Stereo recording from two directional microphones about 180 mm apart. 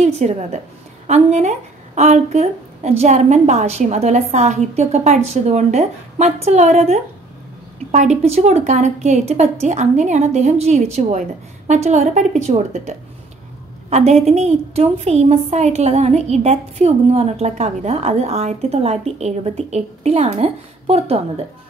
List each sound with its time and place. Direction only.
0.0 s a woman's voice: 40° right (ahead or behind)